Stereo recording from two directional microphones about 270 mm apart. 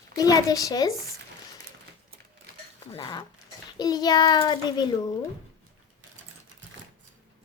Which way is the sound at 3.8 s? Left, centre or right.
Centre.